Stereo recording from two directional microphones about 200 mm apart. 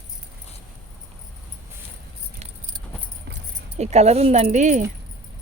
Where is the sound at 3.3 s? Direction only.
55° right (ahead or behind).